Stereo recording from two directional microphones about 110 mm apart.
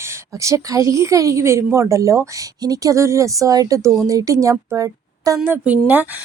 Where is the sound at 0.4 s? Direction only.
30° right (ahead or behind).